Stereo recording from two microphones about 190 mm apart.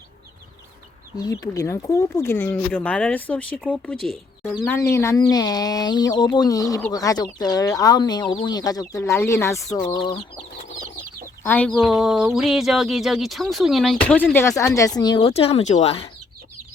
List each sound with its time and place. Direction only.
1.1 s speech: 20° left (ahead or behind)
11.4 s speech: 5° left (ahead or behind); by 16.0 s 35° left (ahead or behind)